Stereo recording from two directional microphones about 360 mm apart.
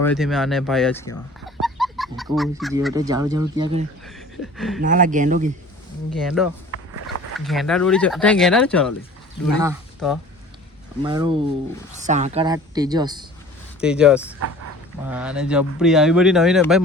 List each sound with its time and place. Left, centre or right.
0.0 s speech: centre
1.6 s a sound: centre
2.3 s speech: centre
4.5 s speech: centre
4.8 s speech: right
6.1 s speech: centre